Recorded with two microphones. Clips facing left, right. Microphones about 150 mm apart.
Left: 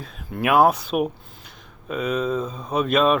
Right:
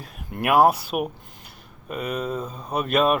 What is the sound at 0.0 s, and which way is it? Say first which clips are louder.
Speech: left 2 dB; 10° right (ahead or behind).